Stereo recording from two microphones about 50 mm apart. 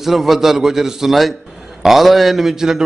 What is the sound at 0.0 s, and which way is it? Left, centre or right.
A man's voice, centre.